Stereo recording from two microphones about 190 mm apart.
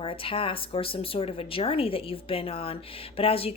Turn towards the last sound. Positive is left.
turn(degrees=30)  # may be behind; listen again after turning